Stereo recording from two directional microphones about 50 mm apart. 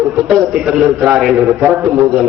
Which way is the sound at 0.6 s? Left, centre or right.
Centre.